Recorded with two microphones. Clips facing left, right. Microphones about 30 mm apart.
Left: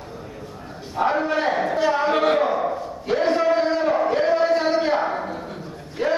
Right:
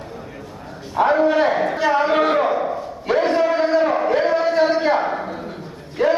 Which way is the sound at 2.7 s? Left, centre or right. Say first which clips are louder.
Right 3 dB; right.